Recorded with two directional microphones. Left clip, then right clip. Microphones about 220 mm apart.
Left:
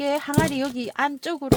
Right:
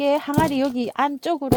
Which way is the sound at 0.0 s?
30° right (ahead or behind).